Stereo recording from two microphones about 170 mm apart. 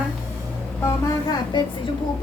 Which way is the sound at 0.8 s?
25° left (ahead or behind).